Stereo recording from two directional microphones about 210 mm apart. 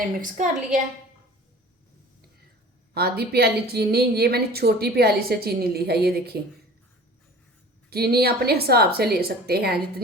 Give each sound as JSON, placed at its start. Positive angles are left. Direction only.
{"t": 0.0, "sound": "a woman's voice", "side_deg": -40}
{"t": 2.9, "sound": "speech", "side_deg": -50}
{"t": 7.9, "sound": "speech", "side_deg": -50}